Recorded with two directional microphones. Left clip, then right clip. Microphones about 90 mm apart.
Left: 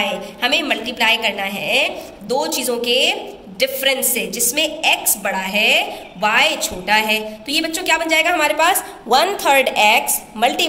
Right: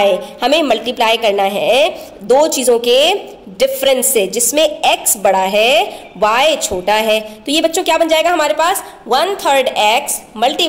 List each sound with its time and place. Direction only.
0.0 s a woman's voice: 55° right (ahead or behind); by 8.4 s 35° right (ahead or behind)
8.4 s a woman's voice: 15° right (ahead or behind)